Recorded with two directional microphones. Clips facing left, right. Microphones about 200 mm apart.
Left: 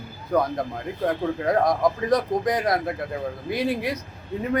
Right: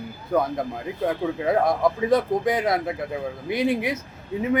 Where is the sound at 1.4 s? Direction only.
5° right (ahead or behind).